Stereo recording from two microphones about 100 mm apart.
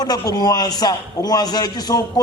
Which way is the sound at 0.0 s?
40° left (ahead or behind).